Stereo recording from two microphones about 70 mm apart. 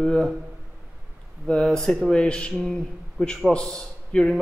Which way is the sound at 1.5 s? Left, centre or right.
Centre.